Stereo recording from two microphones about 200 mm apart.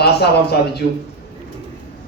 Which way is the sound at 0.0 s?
55° left (ahead or behind).